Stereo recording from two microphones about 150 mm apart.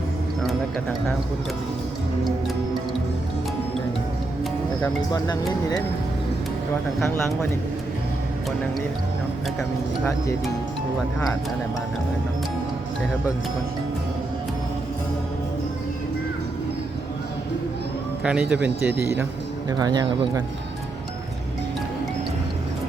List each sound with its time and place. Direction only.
18.2 s speech: 5° right (ahead or behind)
19.8 s speech: 25° right (ahead or behind)